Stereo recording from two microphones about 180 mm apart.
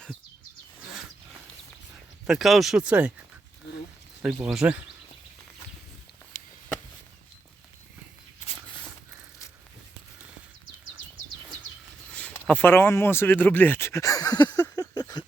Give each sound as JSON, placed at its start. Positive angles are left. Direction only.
{"t": 2.2, "sound": "speech", "side_deg": 0}
{"t": 4.4, "sound": "speech", "side_deg": -5}
{"t": 12.1, "sound": "speech", "side_deg": 5}
{"t": 14.6, "sound": "a sound", "side_deg": 20}